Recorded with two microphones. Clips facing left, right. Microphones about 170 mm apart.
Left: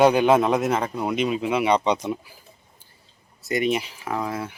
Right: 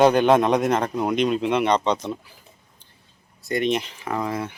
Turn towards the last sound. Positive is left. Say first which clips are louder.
# right 1 dB
turn(degrees=5)  # may be behind; listen again after turning